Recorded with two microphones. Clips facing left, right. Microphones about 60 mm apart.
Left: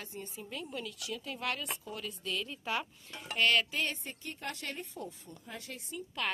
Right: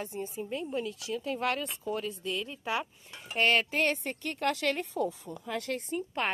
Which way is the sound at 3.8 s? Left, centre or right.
Right.